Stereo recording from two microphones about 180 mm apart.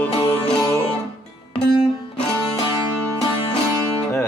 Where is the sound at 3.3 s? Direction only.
30° left (ahead or behind).